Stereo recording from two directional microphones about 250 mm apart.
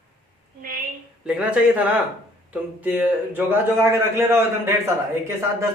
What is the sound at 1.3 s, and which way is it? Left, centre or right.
A man's voice, centre.